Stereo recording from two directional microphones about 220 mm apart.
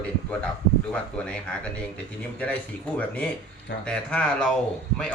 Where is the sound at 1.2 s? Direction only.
5° left (ahead or behind).